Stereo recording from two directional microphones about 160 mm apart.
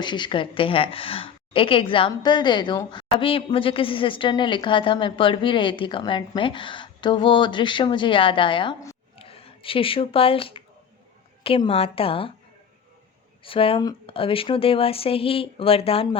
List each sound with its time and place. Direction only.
0.0 s a woman's voice: 30° left (ahead or behind)
13.4 s a woman's voice: 35° left (ahead or behind)